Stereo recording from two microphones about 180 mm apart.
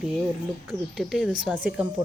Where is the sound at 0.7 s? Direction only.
Centre (ahead or behind).